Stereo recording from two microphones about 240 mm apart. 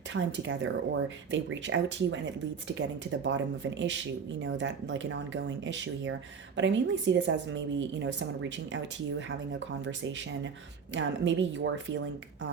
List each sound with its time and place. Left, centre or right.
0.1 s a woman's voice: right